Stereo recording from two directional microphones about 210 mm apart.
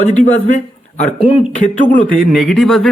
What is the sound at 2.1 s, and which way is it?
Speech, centre (ahead or behind).